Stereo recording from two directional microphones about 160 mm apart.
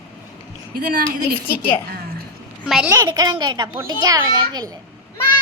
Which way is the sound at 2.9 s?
25° right (ahead or behind).